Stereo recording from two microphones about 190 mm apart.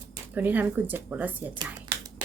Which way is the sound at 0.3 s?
10° right (ahead or behind).